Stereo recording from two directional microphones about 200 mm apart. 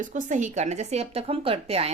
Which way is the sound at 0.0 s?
40° right (ahead or behind).